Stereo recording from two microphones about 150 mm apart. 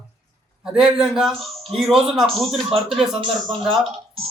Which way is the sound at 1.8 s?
Centre (ahead or behind).